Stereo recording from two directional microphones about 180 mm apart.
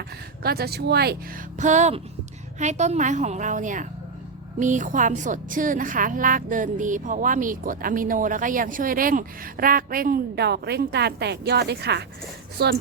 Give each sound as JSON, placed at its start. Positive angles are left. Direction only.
{"t": 0.4, "sound": "speech", "side_deg": -60}
{"t": 1.5, "sound": "a woman's voice", "side_deg": -40}